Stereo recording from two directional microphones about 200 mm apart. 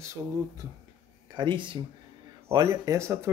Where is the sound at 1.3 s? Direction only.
20° right (ahead or behind).